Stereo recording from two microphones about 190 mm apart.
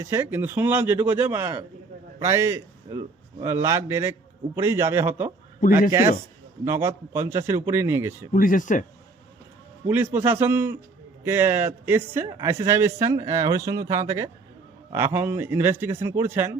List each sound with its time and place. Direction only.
0.0 s a man's voice: 15° right (ahead or behind)
6.7 s speech: 15° right (ahead or behind)
8.3 s speech: 45° left (ahead or behind)
9.8 s speech: 10° right (ahead or behind)